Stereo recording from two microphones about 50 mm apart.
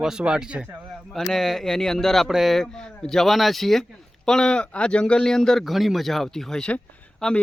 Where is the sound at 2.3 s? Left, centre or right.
Centre.